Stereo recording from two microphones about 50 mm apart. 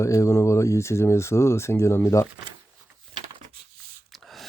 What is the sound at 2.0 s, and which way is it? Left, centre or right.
Speech, left.